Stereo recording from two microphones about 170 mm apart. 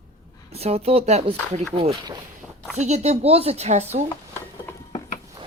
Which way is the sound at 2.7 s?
40° right (ahead or behind).